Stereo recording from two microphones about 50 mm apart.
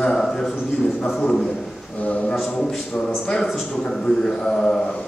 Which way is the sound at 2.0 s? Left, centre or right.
Left.